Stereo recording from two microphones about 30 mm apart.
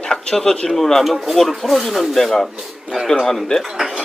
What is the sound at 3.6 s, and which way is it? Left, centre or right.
Speech, centre.